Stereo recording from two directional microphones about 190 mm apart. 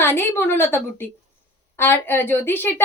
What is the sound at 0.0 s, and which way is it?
A woman's voice, 10° left (ahead or behind).